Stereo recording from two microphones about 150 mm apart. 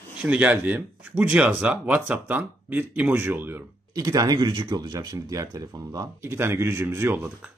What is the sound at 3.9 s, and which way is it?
Speech, 25° right (ahead or behind).